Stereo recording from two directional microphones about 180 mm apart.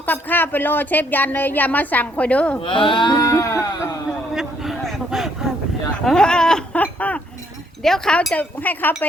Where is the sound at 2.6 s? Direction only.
30° left (ahead or behind).